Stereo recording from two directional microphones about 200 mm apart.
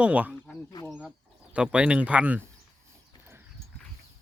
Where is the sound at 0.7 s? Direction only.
20° left (ahead or behind).